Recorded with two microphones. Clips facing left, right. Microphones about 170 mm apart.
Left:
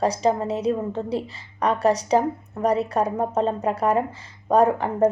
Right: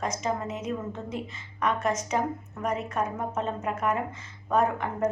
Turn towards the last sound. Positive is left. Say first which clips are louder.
# left 7 dB
turn(degrees=35)  # may be behind; listen again after turning